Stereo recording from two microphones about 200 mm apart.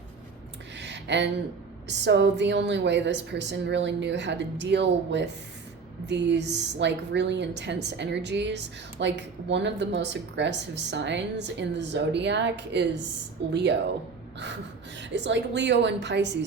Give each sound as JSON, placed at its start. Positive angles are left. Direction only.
{"t": 0.8, "sound": "a sound", "side_deg": -60}
{"t": 1.9, "sound": "a woman's voice", "side_deg": -60}
{"t": 14.9, "sound": "a woman's voice", "side_deg": -60}